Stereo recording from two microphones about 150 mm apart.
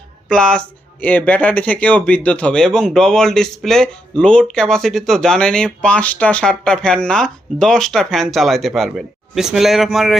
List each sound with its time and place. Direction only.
0.3 s speech: 5° left (ahead or behind)